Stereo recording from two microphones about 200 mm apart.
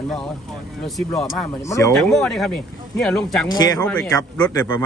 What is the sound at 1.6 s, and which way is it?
Speech, 15° left (ahead or behind).